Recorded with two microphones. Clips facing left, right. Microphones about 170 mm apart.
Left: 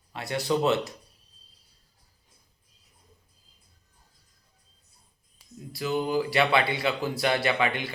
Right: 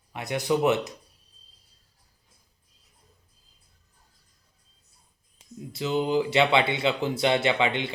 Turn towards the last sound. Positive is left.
turn(degrees=-25)  # may be behind; listen again after turning